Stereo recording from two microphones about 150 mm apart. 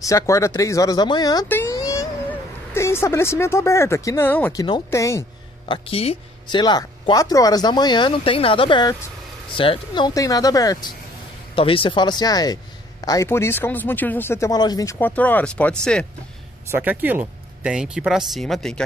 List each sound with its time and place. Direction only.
0.0 s speech: 20° left (ahead or behind)
1.5 s a sound: 20° left (ahead or behind)
2.7 s speech: 15° left (ahead or behind)
4.5 s speech: 25° left (ahead or behind)
5.7 s speech: 40° left (ahead or behind)
6.6 s speech: 30° left (ahead or behind)
11.5 s speech: 35° left (ahead or behind)
15.0 s speech: 10° left (ahead or behind)
16.7 s speech: 10° right (ahead or behind); by 18.9 s 5° left (ahead or behind)